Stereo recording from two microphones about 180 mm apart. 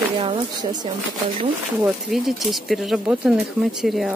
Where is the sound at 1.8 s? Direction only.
Centre (ahead or behind).